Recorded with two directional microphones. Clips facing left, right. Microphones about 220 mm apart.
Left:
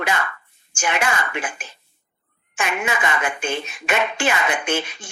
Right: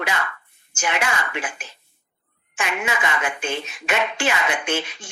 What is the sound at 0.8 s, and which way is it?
A woman's voice, 50° left (ahead or behind).